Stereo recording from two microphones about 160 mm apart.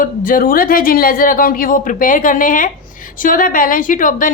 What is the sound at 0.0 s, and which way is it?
A woman's voice, 55° left (ahead or behind).